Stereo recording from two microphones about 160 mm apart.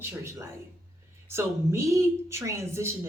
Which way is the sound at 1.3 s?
15° right (ahead or behind).